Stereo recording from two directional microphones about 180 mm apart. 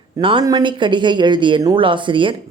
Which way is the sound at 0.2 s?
30° right (ahead or behind).